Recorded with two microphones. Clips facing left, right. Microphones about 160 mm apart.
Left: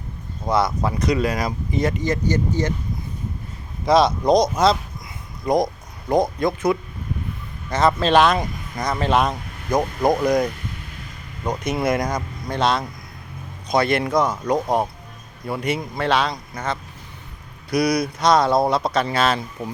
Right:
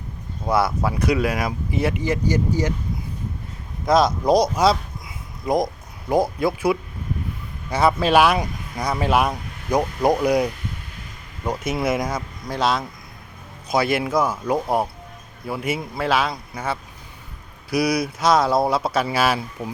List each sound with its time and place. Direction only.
0.4 s speech: 5° right (ahead or behind)
3.8 s speech: centre (ahead or behind)